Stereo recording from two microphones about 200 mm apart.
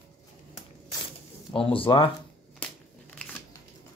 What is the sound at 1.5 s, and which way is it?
Speech, 25° left (ahead or behind).